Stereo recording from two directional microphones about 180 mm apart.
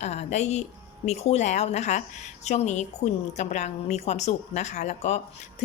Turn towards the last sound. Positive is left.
turn(degrees=40)  # may be behind; listen again after turning